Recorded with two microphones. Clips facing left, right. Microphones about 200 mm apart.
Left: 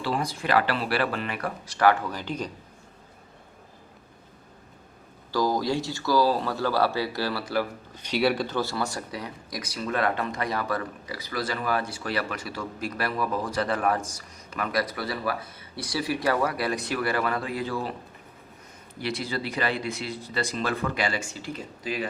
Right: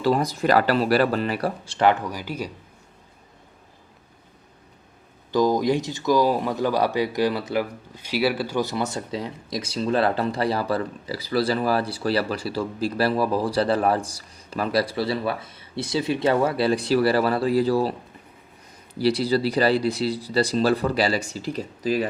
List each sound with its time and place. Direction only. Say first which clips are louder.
0.0 s speech: right 7 dB; 40° right (ahead or behind); by 2.5 s 10° right (ahead or behind)
5.3 s speech: right 5 dB; 20° right (ahead or behind); by 17.9 s 35° right (ahead or behind)
18.9 s speech: right 10 dB; 35° right (ahead or behind)